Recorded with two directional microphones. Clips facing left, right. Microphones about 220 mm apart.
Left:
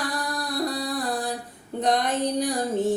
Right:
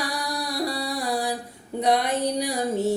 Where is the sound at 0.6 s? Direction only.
10° right (ahead or behind).